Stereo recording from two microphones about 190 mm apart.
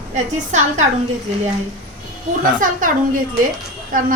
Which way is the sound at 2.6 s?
45° right (ahead or behind).